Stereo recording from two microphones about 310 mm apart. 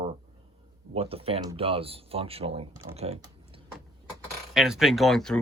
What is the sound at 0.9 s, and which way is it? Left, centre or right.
Speech, centre.